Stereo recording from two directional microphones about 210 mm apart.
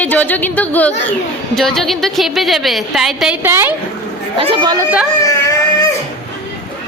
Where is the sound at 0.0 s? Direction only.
10° left (ahead or behind); by 3.8 s 10° right (ahead or behind).